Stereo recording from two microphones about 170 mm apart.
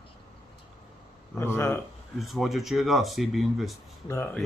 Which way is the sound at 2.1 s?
Centre (ahead or behind).